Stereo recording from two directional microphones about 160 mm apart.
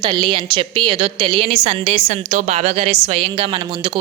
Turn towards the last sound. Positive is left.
turn(degrees=-35)  # may be behind; listen again after turning